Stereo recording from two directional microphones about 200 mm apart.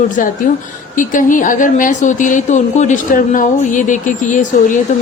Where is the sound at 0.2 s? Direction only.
40° left (ahead or behind).